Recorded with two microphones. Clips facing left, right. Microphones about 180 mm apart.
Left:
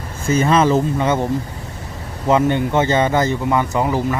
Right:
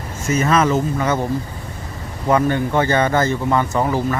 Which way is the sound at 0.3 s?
30° left (ahead or behind).